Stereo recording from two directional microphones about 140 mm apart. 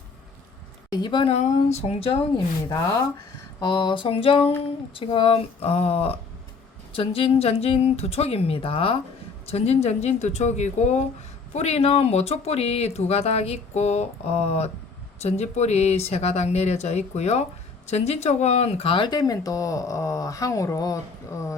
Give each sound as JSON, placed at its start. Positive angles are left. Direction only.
{"t": 0.9, "sound": "speech", "side_deg": 35}
{"t": 1.3, "sound": "speech", "side_deg": 50}
{"t": 2.6, "sound": "speech", "side_deg": 25}